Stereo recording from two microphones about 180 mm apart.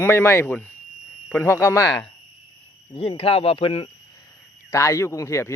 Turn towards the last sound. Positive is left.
turn(degrees=15)  # may be behind; listen again after turning